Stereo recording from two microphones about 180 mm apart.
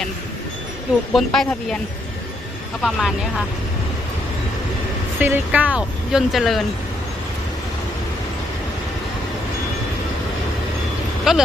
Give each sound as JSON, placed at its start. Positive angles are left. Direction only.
{"t": 1.1, "sound": "speech", "side_deg": 5}
{"t": 2.8, "sound": "speech", "side_deg": 0}
{"t": 5.2, "sound": "speech", "side_deg": -10}
{"t": 11.3, "sound": "speech", "side_deg": 0}